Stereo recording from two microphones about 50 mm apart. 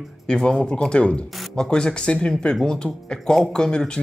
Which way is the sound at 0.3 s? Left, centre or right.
Centre.